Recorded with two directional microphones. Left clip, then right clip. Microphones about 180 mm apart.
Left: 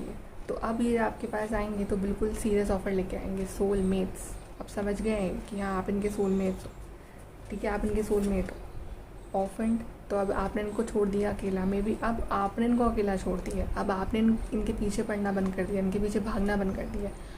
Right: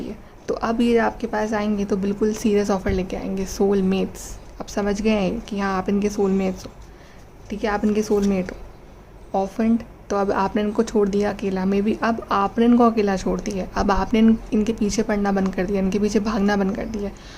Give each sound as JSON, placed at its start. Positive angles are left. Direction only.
{"t": 0.4, "sound": "speech", "side_deg": -50}
{"t": 7.6, "sound": "speech", "side_deg": -50}